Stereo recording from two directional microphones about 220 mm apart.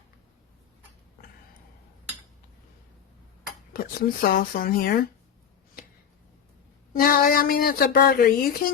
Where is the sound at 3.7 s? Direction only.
40° left (ahead or behind).